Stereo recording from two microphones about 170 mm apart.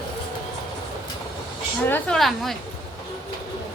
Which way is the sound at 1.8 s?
10° left (ahead or behind).